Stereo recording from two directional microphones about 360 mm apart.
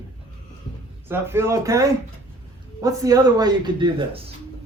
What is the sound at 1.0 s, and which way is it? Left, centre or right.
Speech, centre.